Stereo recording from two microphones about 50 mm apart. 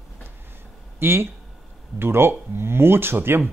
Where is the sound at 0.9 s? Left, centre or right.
Right.